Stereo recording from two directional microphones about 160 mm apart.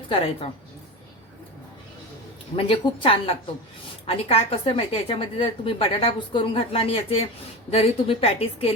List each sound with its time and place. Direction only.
2.6 s a woman's voice: 35° left (ahead or behind)